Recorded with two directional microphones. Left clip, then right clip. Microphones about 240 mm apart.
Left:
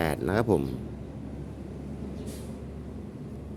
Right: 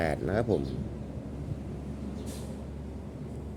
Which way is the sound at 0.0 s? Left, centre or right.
Centre.